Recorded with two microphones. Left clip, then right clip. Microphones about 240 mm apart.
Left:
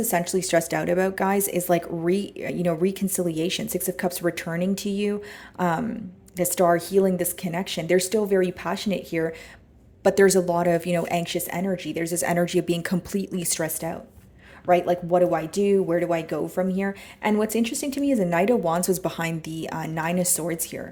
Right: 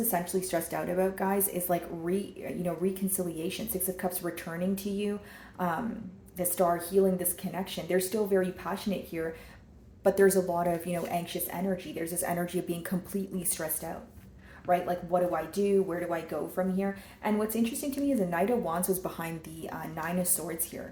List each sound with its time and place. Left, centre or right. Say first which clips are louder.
0.1 s speech: left 10 dB; left